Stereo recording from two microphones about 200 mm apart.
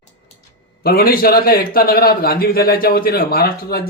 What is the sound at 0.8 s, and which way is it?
A man's voice, 50° left (ahead or behind).